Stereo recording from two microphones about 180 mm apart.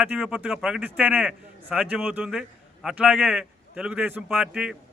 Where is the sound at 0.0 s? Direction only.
5° right (ahead or behind).